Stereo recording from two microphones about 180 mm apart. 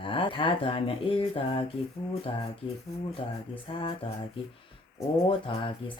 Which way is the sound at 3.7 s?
30° left (ahead or behind).